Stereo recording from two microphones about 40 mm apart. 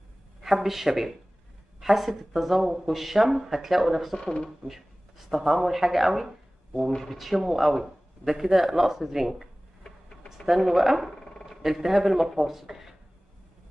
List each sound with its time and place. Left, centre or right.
0.4 s a man's voice: centre